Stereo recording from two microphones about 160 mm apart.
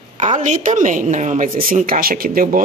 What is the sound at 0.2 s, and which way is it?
A woman's voice, 45° right (ahead or behind).